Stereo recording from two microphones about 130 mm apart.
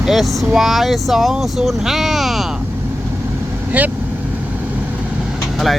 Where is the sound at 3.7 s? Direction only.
10° right (ahead or behind).